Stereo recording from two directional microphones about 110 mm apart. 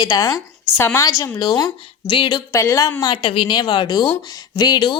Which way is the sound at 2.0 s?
50° left (ahead or behind).